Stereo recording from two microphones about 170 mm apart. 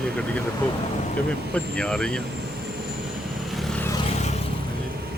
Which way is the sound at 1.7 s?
5° left (ahead or behind).